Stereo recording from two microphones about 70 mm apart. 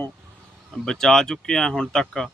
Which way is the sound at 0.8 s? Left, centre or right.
Centre.